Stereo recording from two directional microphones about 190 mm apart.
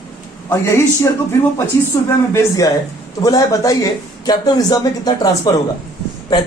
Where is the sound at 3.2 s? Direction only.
20° left (ahead or behind).